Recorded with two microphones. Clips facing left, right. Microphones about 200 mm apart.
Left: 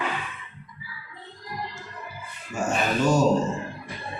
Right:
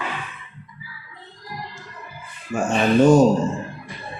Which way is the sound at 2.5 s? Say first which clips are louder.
Right 5 dB; 50° right (ahead or behind).